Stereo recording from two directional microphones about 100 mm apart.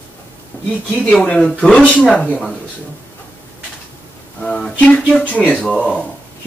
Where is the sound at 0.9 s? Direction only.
5° left (ahead or behind).